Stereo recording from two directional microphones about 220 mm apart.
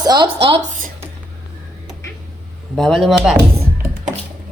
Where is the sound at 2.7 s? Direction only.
Centre (ahead or behind).